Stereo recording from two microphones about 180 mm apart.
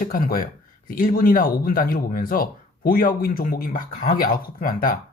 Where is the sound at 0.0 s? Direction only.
50° left (ahead or behind).